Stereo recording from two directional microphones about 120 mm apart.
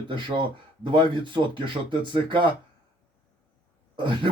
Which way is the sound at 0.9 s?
40° right (ahead or behind).